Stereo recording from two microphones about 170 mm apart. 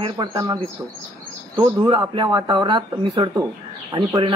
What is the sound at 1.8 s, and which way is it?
Speech, 25° right (ahead or behind).